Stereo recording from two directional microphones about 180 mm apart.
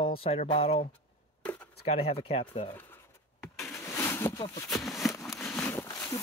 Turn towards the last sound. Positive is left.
turn(degrees=10)  # may be behind; listen again after turning